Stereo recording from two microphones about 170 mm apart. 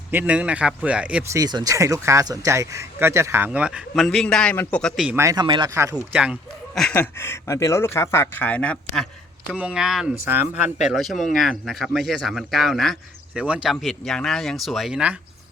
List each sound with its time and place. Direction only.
0.1 s speech: 10° right (ahead or behind)
1.4 s speech: 20° right (ahead or behind); by 5.0 s 5° left (ahead or behind)
5.0 s speech: 15° right (ahead or behind)
6.0 s speech: 5° right (ahead or behind)
6.7 s speech: 5° left (ahead or behind)
9.5 s speech: 5° right (ahead or behind)
10.8 s speech: centre (ahead or behind)